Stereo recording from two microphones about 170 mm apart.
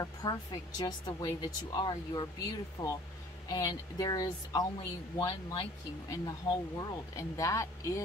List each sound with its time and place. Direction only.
0.0 s speech: 25° left (ahead or behind)